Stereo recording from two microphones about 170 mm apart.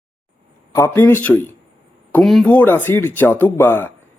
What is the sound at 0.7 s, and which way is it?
Speech, 15° left (ahead or behind).